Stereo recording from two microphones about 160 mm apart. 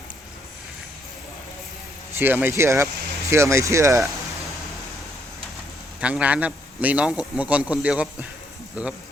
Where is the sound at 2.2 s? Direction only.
15° right (ahead or behind).